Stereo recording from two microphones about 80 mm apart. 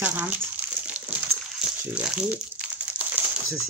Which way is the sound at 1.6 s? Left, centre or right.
Centre.